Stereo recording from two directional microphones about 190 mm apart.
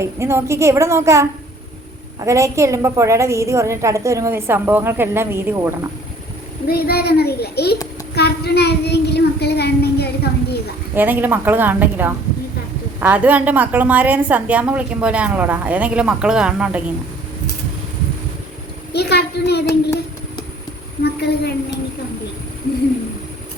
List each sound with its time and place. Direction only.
0.0 s a woman's voice: 15° right (ahead or behind)
6.7 s child singing: 55° left (ahead or behind)
10.9 s a woman's voice: 10° right (ahead or behind)
18.9 s child singing: 60° left (ahead or behind)
19.6 s child singing: 15° left (ahead or behind)
21.0 s a woman's voice: 60° left (ahead or behind)